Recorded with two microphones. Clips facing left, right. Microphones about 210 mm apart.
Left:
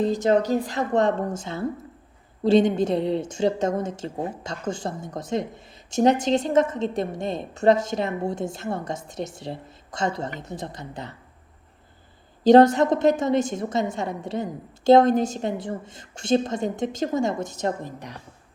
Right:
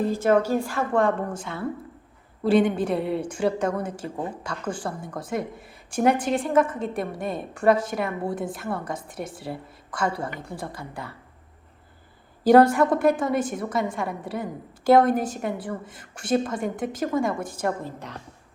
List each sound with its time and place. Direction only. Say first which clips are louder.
0.1 s a woman's voice: even; 20° left (ahead or behind)
12.4 s a woman's voice: left 2 dB; 20° left (ahead or behind)